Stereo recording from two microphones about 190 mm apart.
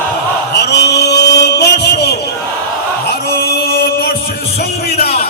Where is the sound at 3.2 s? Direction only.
55° left (ahead or behind).